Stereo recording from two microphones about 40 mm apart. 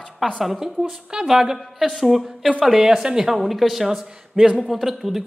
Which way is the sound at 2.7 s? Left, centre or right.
Centre.